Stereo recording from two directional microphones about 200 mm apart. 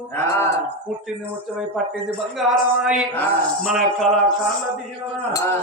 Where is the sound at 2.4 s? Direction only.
5° right (ahead or behind).